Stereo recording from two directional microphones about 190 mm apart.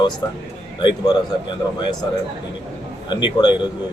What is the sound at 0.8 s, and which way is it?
Speech, 25° left (ahead or behind).